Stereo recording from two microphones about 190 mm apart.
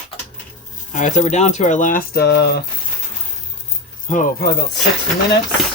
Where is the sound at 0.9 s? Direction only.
40° left (ahead or behind); by 2.6 s 60° left (ahead or behind).